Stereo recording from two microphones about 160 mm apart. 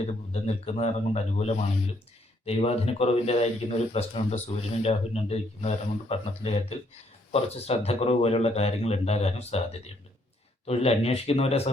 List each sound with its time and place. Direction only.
0.4 s a man's voice: 45° left (ahead or behind)
10.7 s a man's voice: 40° left (ahead or behind)